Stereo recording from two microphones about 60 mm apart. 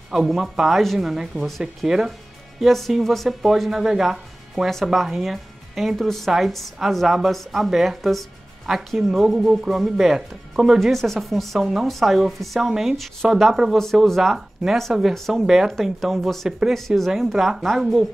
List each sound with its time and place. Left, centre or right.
0.1 s speech: centre
15.4 s speech: centre
16.4 s speech: centre
16.7 s speech: centre